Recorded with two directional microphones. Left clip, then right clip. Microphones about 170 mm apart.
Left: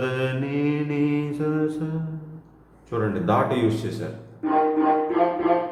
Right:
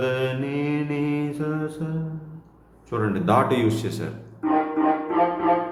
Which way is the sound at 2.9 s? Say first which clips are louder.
Right 1 dB; 25° right (ahead or behind).